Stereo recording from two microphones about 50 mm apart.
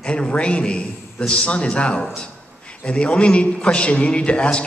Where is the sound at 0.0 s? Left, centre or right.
Left.